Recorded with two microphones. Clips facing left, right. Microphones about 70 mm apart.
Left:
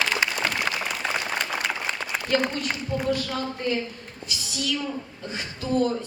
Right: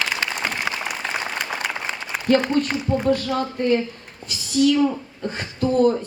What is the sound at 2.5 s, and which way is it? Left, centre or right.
Speech, right.